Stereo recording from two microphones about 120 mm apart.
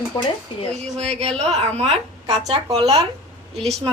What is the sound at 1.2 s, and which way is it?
A man's voice, 60° right (ahead or behind).